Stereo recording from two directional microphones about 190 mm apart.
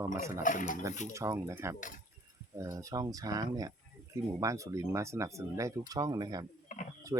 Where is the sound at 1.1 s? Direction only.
15° right (ahead or behind).